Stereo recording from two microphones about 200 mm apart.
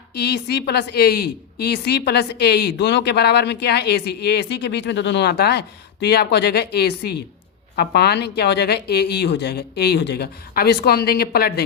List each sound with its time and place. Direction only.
0.1 s a woman's voice: 55° left (ahead or behind)